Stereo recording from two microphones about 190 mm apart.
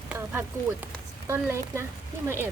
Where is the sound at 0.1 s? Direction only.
10° right (ahead or behind).